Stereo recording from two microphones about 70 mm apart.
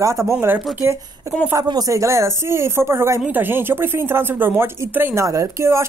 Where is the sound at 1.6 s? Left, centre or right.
Right.